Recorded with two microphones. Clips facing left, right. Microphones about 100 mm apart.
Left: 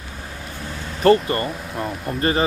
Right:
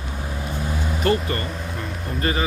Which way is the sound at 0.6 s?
15° right (ahead or behind).